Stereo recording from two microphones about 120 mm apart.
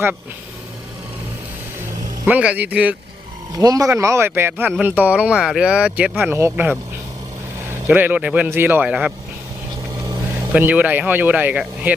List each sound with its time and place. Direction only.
2.2 s speech: 10° right (ahead or behind)
3.6 s speech: 30° right (ahead or behind)
7.9 s speech: 15° right (ahead or behind)
10.0 s vehicle: 35° right (ahead or behind)
10.5 s speech: 15° right (ahead or behind)